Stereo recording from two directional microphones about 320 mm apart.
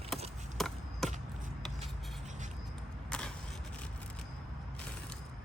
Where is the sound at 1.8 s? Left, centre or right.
Right.